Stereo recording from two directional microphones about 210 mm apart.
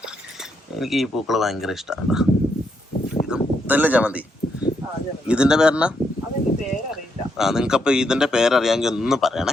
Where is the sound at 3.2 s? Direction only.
5° right (ahead or behind).